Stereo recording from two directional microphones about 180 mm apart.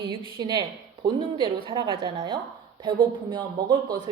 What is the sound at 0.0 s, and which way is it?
Speech, 25° right (ahead or behind).